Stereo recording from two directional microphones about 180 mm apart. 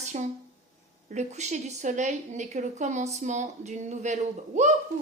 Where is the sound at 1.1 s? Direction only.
40° right (ahead or behind).